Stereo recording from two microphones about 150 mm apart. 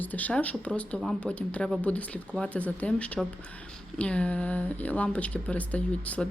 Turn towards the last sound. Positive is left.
turn(degrees=10)  # may be behind; listen again after turning